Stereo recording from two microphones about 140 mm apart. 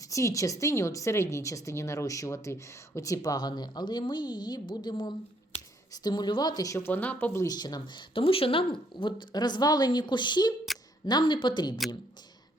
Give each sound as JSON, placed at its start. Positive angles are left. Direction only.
{"t": 0.1, "sound": "a woman's voice", "side_deg": 20}
{"t": 7.4, "sound": "speech", "side_deg": 30}